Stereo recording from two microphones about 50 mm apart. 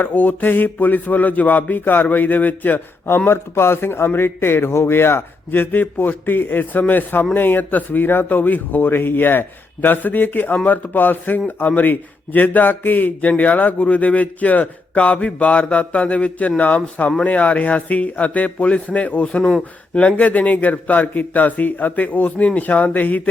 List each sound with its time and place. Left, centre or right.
0.0 s a man's voice: left
3.2 s speech: left
5.5 s a man's voice: left